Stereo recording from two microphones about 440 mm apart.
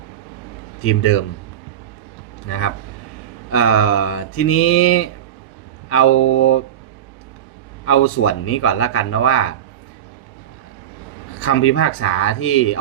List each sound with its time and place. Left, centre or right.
0.8 s speech: left
3.5 s speech: left
7.9 s speech: left
11.3 s speech: left